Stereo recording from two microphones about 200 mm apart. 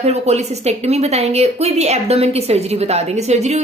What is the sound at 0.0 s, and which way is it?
A woman's voice, 35° right (ahead or behind).